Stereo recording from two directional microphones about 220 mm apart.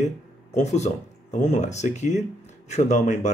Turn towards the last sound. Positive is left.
turn(degrees=30)  # may be behind; listen again after turning